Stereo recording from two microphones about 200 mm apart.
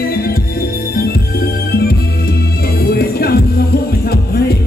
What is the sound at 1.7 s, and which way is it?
Music, 50° left (ahead or behind).